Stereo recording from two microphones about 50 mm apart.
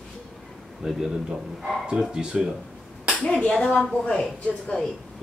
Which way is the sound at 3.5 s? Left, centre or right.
Centre.